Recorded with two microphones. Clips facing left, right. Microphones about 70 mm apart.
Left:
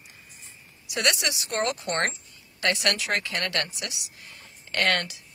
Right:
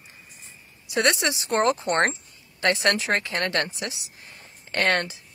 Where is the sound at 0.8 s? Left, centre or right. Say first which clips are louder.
Right 4 dB; right.